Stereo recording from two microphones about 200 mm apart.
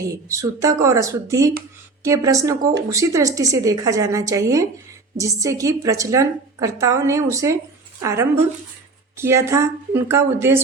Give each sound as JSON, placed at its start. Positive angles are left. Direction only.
{"t": 0.0, "sound": "a woman's voice", "side_deg": -15}